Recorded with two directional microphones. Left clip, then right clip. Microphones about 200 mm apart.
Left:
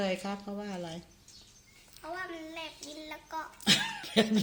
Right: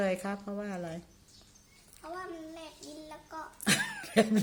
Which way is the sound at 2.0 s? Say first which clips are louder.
Left 2 dB; 25° left (ahead or behind).